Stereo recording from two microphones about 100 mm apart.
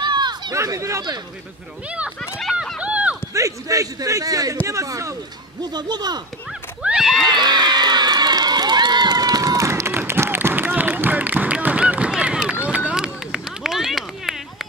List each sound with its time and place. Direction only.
0.0 s a sound: 45° right (ahead or behind)
0.6 s a man's voice: 30° right (ahead or behind)
1.9 s speech: 10° right (ahead or behind)
2.8 s clip-clop: 15° right (ahead or behind)
3.3 s a man's voice: 35° right (ahead or behind)
5.6 s speech: 45° right (ahead or behind)
6.8 s horse: 5° right (ahead or behind)
7.2 s crowd: 45° right (ahead or behind); by 12.4 s 10° right (ahead or behind)
12.4 s run: 10° right (ahead or behind)